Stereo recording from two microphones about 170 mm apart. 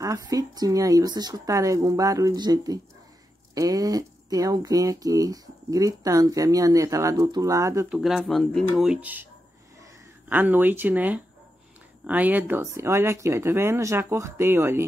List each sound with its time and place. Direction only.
0.0 s speech: 20° right (ahead or behind)
7.9 s speech: 5° right (ahead or behind)